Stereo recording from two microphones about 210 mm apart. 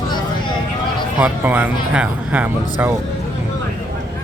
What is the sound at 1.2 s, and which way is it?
Speech, 10° right (ahead or behind).